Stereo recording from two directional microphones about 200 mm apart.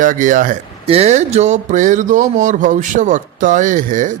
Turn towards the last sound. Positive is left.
turn(degrees=-40)  # may be behind; listen again after turning